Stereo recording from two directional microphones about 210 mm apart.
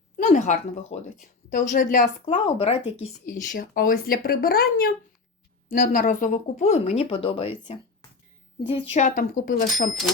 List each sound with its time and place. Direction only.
0.2 s speech: 35° left (ahead or behind)
2.2 s speech: 25° left (ahead or behind)
3.0 s speech: 40° left (ahead or behind)
8.6 s speech: 30° left (ahead or behind)